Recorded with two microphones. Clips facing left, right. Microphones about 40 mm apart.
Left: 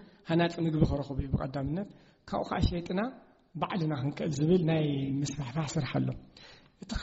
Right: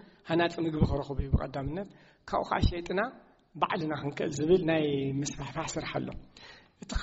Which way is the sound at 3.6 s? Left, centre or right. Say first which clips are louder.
Right 2 dB; right.